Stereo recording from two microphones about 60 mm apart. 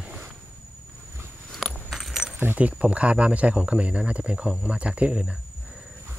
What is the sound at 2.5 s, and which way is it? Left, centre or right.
Speech, right.